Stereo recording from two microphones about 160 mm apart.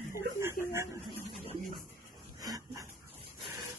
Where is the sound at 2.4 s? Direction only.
25° right (ahead or behind).